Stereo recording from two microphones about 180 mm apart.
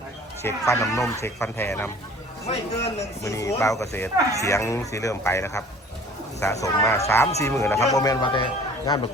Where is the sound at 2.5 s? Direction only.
35° left (ahead or behind).